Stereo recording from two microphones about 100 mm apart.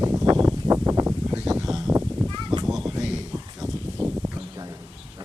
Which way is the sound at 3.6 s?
25° right (ahead or behind).